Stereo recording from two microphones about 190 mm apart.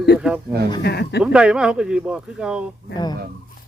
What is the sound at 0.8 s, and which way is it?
Speech, 60° left (ahead or behind).